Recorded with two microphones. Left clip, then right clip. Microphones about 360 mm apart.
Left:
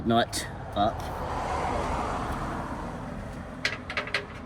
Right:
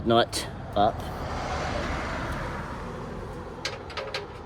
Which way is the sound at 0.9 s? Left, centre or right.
Left.